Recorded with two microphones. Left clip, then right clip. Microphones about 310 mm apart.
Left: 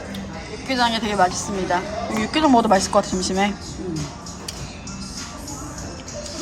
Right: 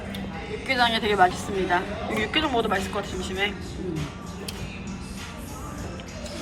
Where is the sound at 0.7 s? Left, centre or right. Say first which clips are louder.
Left 1 dB; centre.